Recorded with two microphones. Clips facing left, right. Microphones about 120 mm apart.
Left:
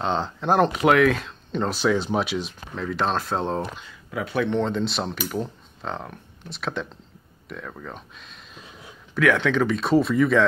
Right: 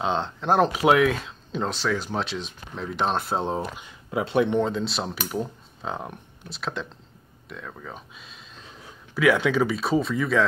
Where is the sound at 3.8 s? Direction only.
25° right (ahead or behind).